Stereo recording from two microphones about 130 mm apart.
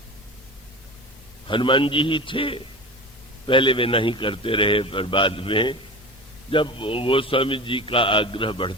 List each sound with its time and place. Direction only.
1.5 s a man's voice: 40° left (ahead or behind)